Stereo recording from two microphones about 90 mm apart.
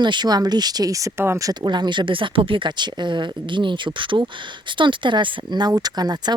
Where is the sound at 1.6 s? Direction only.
55° right (ahead or behind).